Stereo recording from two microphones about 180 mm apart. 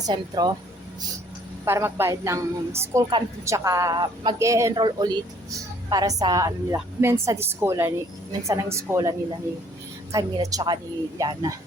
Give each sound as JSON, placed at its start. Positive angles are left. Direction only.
{"t": 0.0, "sound": "a woman's voice", "side_deg": -25}
{"t": 1.6, "sound": "a woman's voice", "side_deg": -15}